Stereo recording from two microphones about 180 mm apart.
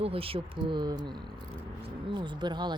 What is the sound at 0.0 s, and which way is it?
Speech, 30° right (ahead or behind).